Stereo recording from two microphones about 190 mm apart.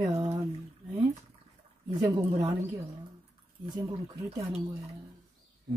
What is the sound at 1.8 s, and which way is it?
Speech, 30° right (ahead or behind).